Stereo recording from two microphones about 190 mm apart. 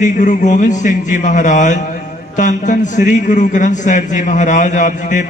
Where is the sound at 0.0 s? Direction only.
40° left (ahead or behind).